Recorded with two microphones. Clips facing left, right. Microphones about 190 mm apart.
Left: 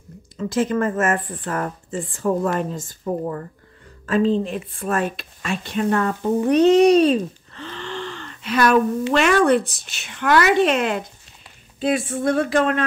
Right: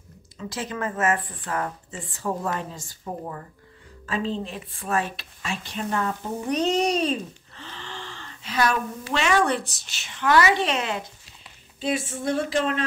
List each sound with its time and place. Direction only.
0.5 s speech: 50° left (ahead or behind)